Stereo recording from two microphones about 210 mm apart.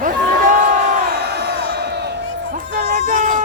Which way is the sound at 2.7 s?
40° right (ahead or behind).